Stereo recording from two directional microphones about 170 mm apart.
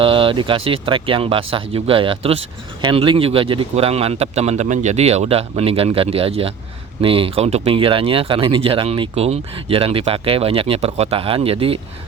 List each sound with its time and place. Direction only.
0.0 s speech: 30° right (ahead or behind)